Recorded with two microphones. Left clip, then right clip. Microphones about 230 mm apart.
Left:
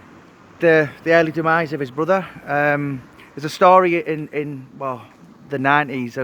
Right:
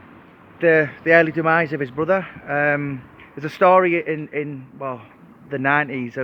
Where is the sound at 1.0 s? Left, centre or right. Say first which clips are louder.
Right 1 dB; centre; by 6.1 s left.